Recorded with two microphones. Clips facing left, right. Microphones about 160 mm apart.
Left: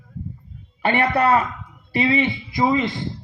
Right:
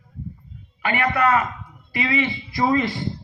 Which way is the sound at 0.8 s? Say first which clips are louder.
Left 2 dB; 35° left (ahead or behind).